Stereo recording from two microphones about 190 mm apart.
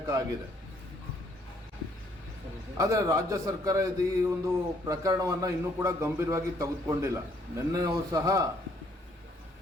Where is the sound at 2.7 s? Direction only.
15° right (ahead or behind).